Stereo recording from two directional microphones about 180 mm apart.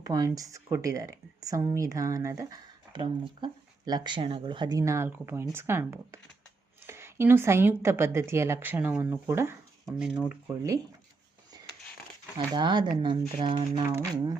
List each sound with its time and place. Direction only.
0.0 s speech: 20° right (ahead or behind)
11.5 s a sound: 20° right (ahead or behind)
12.5 s speech: 25° right (ahead or behind)